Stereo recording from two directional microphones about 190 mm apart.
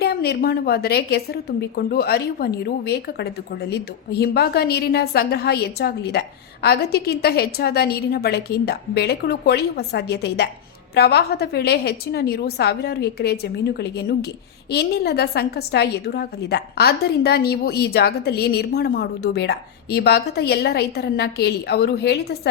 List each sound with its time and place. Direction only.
0.0 s a woman's voice: 55° left (ahead or behind)